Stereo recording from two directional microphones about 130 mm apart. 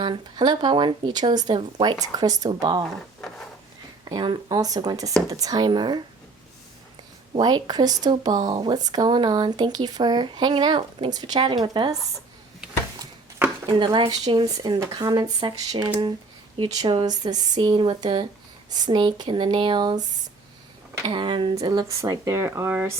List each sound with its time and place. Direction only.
0.0 s speech: 35° right (ahead or behind)
3.2 s wood: 5° left (ahead or behind)
4.0 s speech: 35° right (ahead or behind)
7.3 s speech: 35° right (ahead or behind)
13.7 s speech: 40° right (ahead or behind)
21.1 s speech: 40° right (ahead or behind)
21.6 s speech: 30° right (ahead or behind)